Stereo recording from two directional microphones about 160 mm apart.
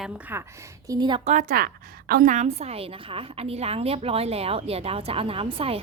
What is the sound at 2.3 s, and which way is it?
A woman's voice, 45° right (ahead or behind).